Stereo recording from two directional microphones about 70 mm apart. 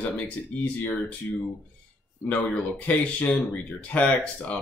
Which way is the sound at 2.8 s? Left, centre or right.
Left.